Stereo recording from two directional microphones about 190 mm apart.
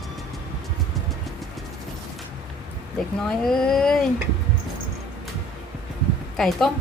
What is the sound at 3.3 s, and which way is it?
Speech, 5° left (ahead or behind).